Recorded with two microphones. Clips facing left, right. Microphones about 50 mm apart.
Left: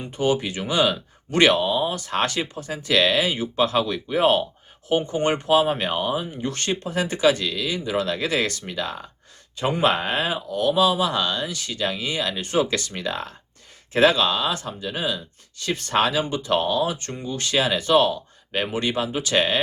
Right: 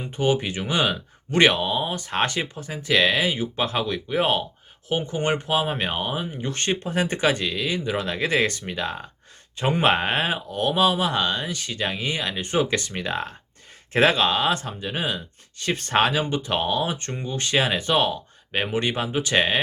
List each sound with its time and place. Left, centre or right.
0.0 s speech: centre
5.7 s speech: right